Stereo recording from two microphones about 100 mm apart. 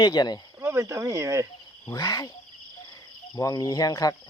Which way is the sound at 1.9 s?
35° left (ahead or behind).